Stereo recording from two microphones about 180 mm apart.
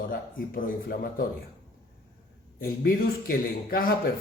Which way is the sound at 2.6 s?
55° left (ahead or behind).